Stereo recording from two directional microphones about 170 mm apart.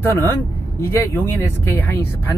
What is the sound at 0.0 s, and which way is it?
Speech, 15° left (ahead or behind).